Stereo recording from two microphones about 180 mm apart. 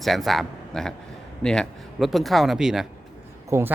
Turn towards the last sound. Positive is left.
turn(degrees=-15)  # may be behind; listen again after turning